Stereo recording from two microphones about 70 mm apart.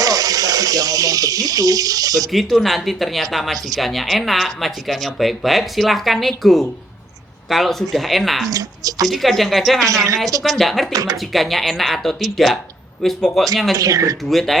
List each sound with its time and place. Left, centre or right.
0.0 s a sound: right
2.3 s speech: centre
8.4 s speech: right
9.0 s speech: centre
9.8 s speech: right
10.4 s speech: centre
10.9 s speech: right
11.3 s speech: centre
13.7 s speech: right
14.3 s speech: centre